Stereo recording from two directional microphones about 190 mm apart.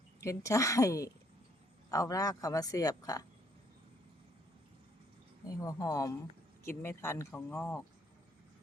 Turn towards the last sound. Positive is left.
turn(degrees=10)  # may be behind; listen again after turning